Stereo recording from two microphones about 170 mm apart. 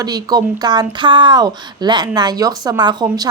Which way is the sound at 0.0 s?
25° right (ahead or behind).